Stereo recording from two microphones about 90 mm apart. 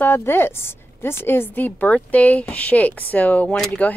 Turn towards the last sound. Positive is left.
turn(degrees=15)  # may be behind; listen again after turning